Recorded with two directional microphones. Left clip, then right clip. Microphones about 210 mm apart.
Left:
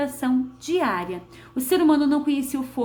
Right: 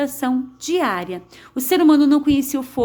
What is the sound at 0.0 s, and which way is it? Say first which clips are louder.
A woman's voice: right 3 dB; 50° right (ahead or behind).